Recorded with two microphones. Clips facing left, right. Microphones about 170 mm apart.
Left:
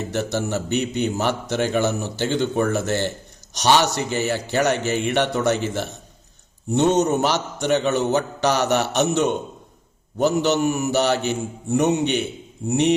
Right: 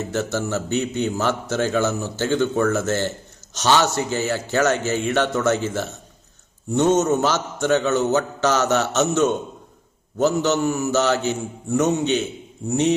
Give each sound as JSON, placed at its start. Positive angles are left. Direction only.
{"t": 0.0, "sound": "a man's voice", "side_deg": 15}